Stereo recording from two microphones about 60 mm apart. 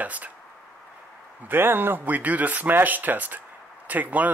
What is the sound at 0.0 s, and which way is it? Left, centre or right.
Speech, right.